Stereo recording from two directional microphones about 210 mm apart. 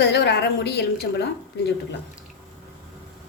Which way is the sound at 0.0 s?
55° left (ahead or behind).